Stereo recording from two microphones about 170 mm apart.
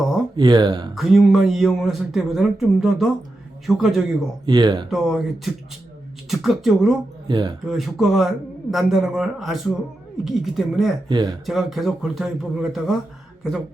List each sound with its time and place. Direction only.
0.3 s speech: 25° right (ahead or behind)
0.9 s speech: centre (ahead or behind)
4.4 s speech: 25° right (ahead or behind)
4.9 s speech: centre (ahead or behind)
6.2 s speech: centre (ahead or behind)
7.3 s speech: 25° right (ahead or behind)
7.6 s speech: centre (ahead or behind)
11.1 s speech: 25° right (ahead or behind)
11.4 s speech: centre (ahead or behind)